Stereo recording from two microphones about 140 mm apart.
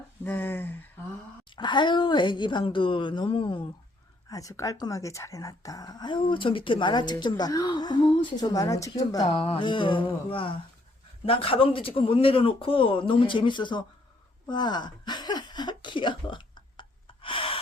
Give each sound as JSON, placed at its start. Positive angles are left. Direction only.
{"t": 0.3, "sound": "speech", "side_deg": 15}
{"t": 1.5, "sound": "speech", "side_deg": 35}
{"t": 4.3, "sound": "speech", "side_deg": 25}
{"t": 9.2, "sound": "speech", "side_deg": 45}
{"t": 17.2, "sound": "gasp", "side_deg": 40}